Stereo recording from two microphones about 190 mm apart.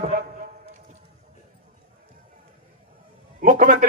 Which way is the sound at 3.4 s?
45° right (ahead or behind).